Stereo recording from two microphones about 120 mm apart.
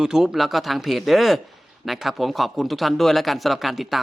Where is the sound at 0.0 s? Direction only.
5° right (ahead or behind).